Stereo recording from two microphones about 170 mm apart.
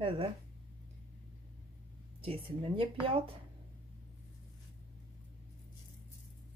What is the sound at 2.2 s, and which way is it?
A woman's voice, 35° right (ahead or behind).